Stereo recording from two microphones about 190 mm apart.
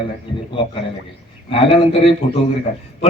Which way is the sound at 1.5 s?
30° left (ahead or behind).